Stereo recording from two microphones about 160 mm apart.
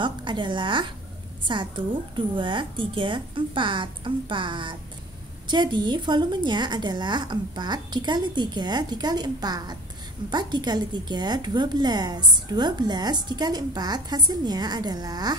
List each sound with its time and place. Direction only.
0.0 s a woman's voice: 30° right (ahead or behind)